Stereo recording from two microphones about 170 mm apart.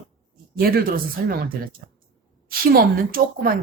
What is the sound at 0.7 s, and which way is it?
Speech, 60° right (ahead or behind).